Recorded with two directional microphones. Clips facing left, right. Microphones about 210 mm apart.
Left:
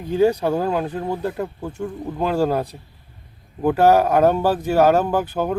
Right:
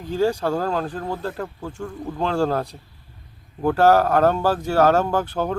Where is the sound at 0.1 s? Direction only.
20° left (ahead or behind).